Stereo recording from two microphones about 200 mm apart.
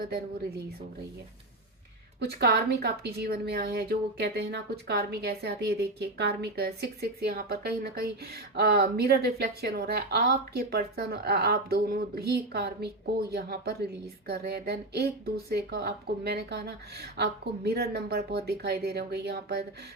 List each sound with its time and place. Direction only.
2.2 s a woman's voice: 55° right (ahead or behind)